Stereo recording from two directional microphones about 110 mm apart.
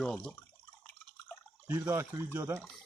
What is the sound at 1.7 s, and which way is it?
Speech, 25° right (ahead or behind).